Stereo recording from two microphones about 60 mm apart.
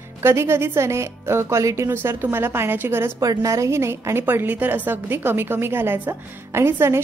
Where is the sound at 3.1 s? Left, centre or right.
Right.